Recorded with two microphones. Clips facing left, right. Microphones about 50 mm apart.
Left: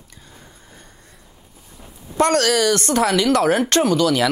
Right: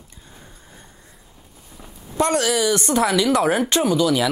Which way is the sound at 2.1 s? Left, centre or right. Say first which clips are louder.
Left 3 dB; left.